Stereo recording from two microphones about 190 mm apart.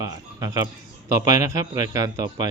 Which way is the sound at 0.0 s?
20° right (ahead or behind).